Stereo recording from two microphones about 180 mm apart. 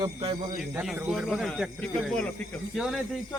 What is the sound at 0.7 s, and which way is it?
Speech, 5° right (ahead or behind).